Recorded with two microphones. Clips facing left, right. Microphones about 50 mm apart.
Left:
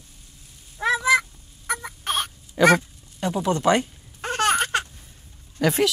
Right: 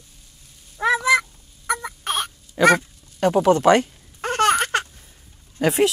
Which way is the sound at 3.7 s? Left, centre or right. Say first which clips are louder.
Right 4 dB; right.